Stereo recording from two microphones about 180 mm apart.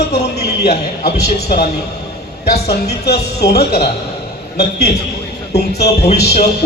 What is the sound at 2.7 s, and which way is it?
A woman's voice, 65° left (ahead or behind).